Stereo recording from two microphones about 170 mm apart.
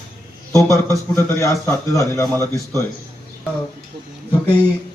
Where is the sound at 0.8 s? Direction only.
15° left (ahead or behind).